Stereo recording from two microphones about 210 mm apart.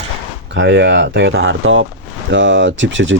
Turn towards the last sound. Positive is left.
turn(degrees=-60)  # may be behind; listen again after turning